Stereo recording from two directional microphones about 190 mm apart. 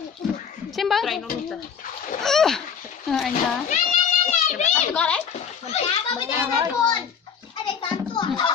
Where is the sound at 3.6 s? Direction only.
40° left (ahead or behind).